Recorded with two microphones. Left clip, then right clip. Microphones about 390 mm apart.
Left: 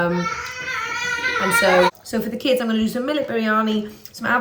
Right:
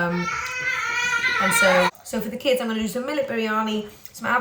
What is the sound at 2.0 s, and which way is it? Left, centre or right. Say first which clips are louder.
Speech: left 2 dB; centre.